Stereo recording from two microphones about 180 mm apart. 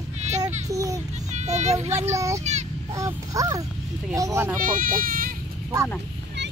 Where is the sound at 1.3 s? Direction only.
40° right (ahead or behind).